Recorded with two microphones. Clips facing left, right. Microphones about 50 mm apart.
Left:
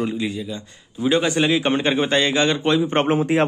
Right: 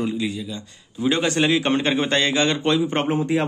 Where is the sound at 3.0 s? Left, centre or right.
Left.